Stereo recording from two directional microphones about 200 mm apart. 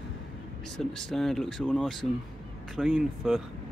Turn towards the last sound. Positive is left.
turn(degrees=0)  # may be behind; listen again after turning